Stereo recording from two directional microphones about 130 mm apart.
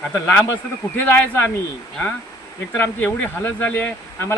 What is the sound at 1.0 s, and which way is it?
Speech, 15° left (ahead or behind).